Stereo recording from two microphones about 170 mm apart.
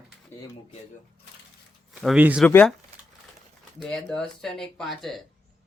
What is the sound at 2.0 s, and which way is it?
Speech, 5° right (ahead or behind).